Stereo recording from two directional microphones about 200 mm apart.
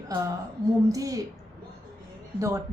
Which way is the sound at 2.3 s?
15° right (ahead or behind).